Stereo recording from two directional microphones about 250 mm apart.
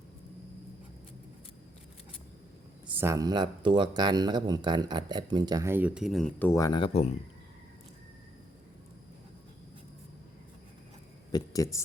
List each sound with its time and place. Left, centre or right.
2.8 s speech: centre; by 7.1 s left
11.3 s speech: centre